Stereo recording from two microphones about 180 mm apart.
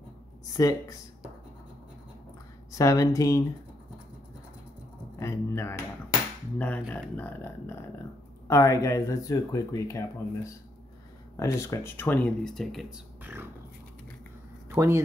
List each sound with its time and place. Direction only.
0.5 s speech: 20° left (ahead or behind)
2.7 s speech: 20° left (ahead or behind)
5.2 s speech: 15° left (ahead or behind)
13.2 s speech: 10° right (ahead or behind)
14.7 s speech: 15° right (ahead or behind)